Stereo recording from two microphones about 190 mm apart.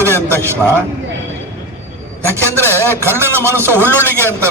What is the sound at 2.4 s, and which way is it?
Speech, 10° left (ahead or behind).